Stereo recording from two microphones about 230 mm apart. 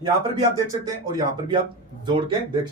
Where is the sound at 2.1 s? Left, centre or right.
Right.